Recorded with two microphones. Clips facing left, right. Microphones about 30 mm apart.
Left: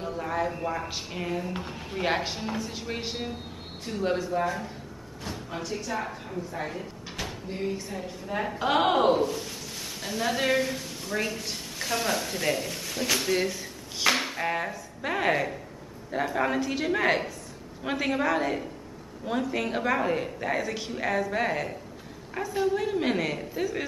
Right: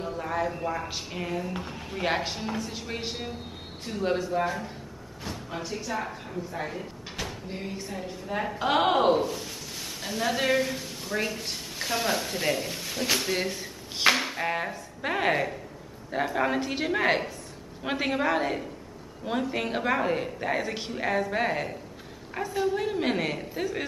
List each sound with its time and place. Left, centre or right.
0.0 s speech: centre
14.1 s speech: centre
16.5 s speech: centre
16.9 s speech: centre